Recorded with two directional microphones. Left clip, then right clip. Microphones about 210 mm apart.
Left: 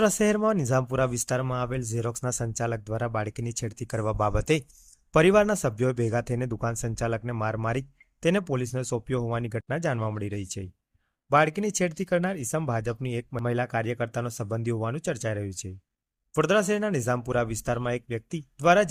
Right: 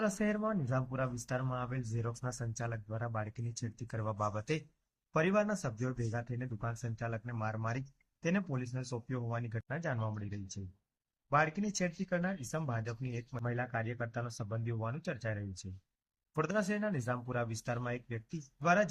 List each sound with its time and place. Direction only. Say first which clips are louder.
0.0 s speech: left 12 dB; 50° left (ahead or behind)